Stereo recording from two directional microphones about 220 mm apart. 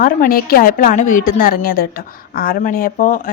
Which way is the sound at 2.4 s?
35° left (ahead or behind).